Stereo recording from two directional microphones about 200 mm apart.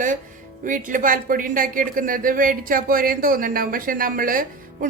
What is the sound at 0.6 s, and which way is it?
Speech, 40° right (ahead or behind).